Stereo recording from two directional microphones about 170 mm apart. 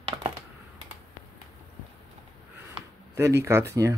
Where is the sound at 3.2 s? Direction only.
15° right (ahead or behind).